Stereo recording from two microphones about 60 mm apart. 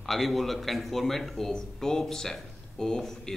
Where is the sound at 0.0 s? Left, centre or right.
Centre.